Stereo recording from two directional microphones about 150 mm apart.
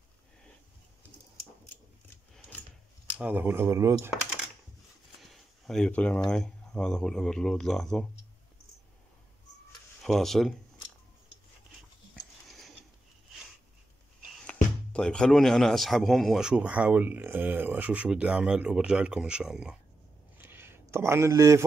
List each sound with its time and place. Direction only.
3.2 s speech: 10° right (ahead or behind)
5.2 s speech: centre (ahead or behind)
10.0 s speech: centre (ahead or behind)
12.4 s a sound: centre (ahead or behind)
14.2 s speech: 5° left (ahead or behind)
20.3 s a sound: 15° right (ahead or behind)
20.9 s speech: 15° right (ahead or behind)